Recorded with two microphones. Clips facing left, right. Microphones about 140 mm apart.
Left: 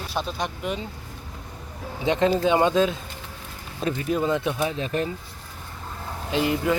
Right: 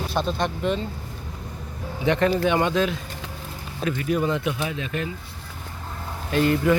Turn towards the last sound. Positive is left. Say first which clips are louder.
# right 3 dB
turn(degrees=15)  # may be behind; listen again after turning